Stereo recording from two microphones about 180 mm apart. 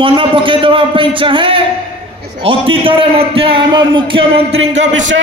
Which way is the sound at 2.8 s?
30° right (ahead or behind).